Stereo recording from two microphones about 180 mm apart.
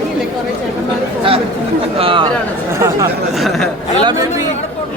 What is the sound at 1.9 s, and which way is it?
Speech, 30° right (ahead or behind).